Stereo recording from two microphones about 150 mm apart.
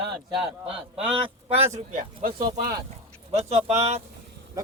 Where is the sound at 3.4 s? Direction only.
45° right (ahead or behind).